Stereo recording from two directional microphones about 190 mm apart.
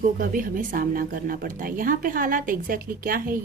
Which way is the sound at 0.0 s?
45° right (ahead or behind).